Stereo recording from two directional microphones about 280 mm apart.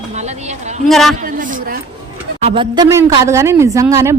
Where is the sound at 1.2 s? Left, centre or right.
Right.